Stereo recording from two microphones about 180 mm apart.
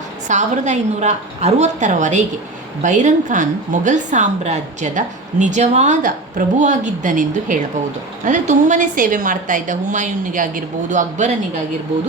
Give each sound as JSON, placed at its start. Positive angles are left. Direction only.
{"t": 0.3, "sound": "a woman's voice", "side_deg": -40}